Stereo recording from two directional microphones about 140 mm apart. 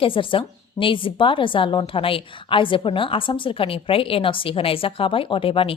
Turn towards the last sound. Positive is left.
turn(degrees=40)  # may be behind; listen again after turning